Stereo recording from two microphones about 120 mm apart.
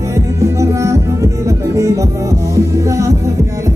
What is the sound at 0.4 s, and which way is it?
Music, 25° right (ahead or behind).